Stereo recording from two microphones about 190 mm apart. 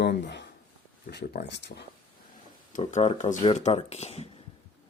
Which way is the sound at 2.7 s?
40° left (ahead or behind).